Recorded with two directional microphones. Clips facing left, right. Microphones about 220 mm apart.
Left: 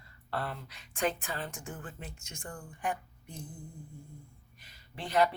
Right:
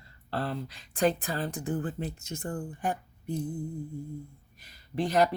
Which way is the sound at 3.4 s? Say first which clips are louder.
Right 13 dB; 60° right (ahead or behind).